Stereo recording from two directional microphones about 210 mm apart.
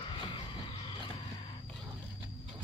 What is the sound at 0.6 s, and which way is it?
Vehicle, 25° left (ahead or behind).